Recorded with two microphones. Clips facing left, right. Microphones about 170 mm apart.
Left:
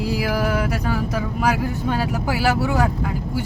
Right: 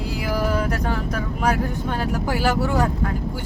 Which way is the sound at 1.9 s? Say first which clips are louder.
Left 1 dB; 10° left (ahead or behind).